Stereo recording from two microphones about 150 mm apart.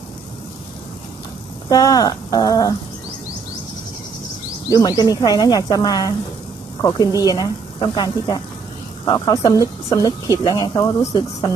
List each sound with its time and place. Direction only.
1.7 s speech: 25° left (ahead or behind)
4.7 s speech: 25° left (ahead or behind)